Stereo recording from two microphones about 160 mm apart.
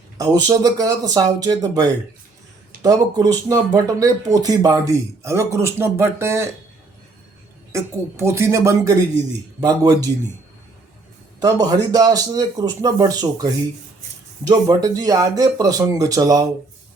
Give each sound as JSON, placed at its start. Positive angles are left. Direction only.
{"t": 0.2, "sound": "speech", "side_deg": -25}
{"t": 7.7, "sound": "speech", "side_deg": -20}
{"t": 11.3, "sound": "speech", "side_deg": -25}